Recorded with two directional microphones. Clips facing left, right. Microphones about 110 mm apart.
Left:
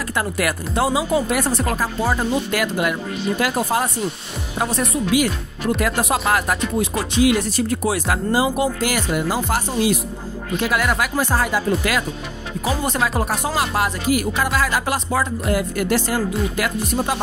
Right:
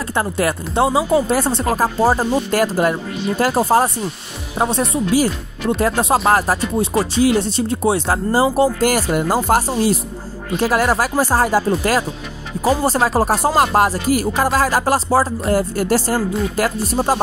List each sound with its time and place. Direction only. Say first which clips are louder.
0.1 s speech: right 4 dB; 30° right (ahead or behind)